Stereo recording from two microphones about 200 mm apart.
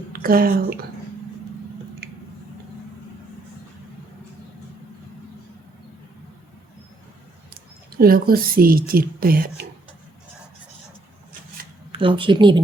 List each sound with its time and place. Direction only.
0.1 s speech: 45° right (ahead or behind)
7.9 s a woman's voice: 50° right (ahead or behind)
11.9 s a woman's voice: 25° right (ahead or behind)